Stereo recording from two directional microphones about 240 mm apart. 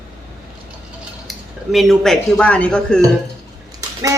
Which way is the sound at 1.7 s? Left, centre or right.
Centre.